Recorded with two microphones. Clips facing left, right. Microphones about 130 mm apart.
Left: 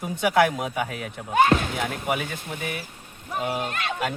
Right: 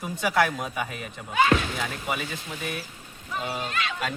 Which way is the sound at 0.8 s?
Centre (ahead or behind).